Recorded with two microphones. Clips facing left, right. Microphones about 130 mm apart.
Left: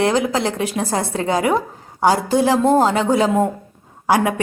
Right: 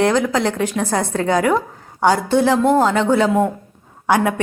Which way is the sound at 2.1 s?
35° left (ahead or behind).